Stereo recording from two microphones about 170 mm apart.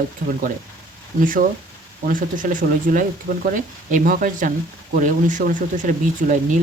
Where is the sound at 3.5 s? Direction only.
50° right (ahead or behind).